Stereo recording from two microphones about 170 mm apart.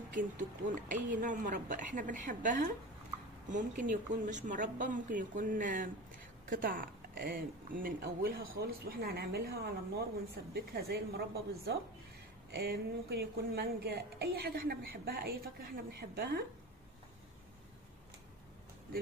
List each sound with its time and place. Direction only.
0.1 s speech: 50° right (ahead or behind); by 16.4 s 65° right (ahead or behind)